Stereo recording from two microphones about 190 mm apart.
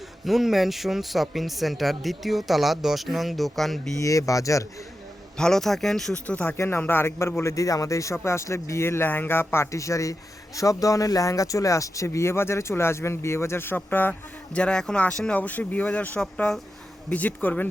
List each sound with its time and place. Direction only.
0.3 s speech: centre (ahead or behind)
4.0 s speech: 15° left (ahead or behind)
5.4 s speech: 5° left (ahead or behind)